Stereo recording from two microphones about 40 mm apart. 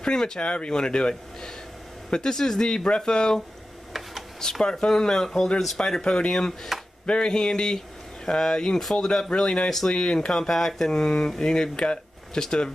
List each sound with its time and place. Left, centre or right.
0.0 s speech: centre
6.3 s speech: centre
7.1 s speech: left